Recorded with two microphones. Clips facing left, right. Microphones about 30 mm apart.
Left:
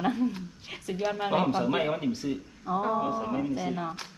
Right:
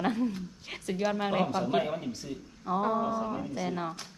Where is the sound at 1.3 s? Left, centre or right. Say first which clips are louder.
Left 2 dB; left.